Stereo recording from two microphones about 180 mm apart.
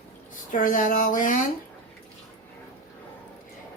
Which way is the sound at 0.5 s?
50° left (ahead or behind).